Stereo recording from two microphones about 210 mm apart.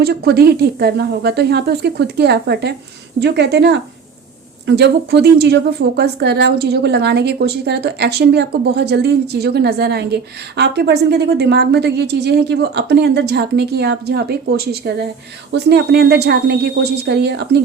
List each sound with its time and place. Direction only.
0.0 s speech: 50° right (ahead or behind)